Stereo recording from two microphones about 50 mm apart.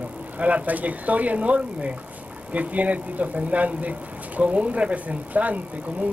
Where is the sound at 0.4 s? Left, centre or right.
Right.